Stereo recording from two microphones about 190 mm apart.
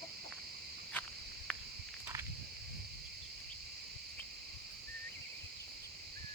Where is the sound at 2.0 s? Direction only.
15° right (ahead or behind).